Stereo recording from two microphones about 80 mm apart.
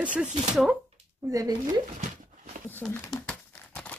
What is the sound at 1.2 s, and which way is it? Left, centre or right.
Speech, right.